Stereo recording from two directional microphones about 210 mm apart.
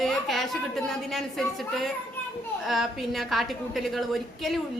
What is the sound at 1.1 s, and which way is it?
A woman's voice, centre (ahead or behind).